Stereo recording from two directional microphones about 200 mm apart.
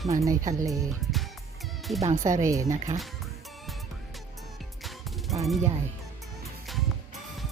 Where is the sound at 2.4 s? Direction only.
15° right (ahead or behind).